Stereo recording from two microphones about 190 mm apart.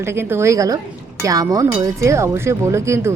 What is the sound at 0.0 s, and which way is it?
Speech, 10° right (ahead or behind).